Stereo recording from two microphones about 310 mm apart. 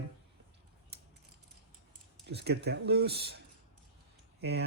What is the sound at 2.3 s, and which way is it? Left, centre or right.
Speech, right.